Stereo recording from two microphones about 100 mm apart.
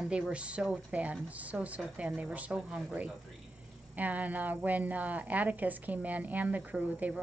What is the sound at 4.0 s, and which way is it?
A woman's voice, 15° right (ahead or behind).